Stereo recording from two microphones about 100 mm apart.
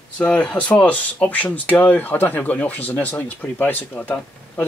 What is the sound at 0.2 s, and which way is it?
Speech, 10° left (ahead or behind).